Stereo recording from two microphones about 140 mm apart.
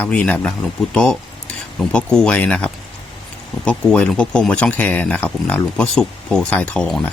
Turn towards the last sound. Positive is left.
turn(degrees=5)  # may be behind; listen again after turning